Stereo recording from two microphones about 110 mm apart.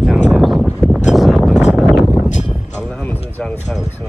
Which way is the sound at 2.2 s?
90° left.